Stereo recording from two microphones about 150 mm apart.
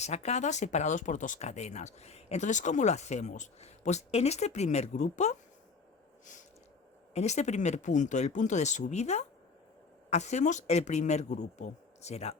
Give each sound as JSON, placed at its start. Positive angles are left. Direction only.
{"t": 0.0, "sound": "speech", "side_deg": 45}
{"t": 7.1, "sound": "speech", "side_deg": 50}